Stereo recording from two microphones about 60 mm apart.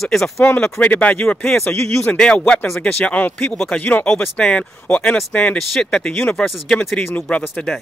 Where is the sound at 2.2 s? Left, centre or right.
Centre.